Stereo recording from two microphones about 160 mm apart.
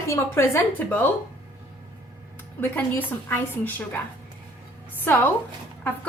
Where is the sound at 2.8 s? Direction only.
10° left (ahead or behind).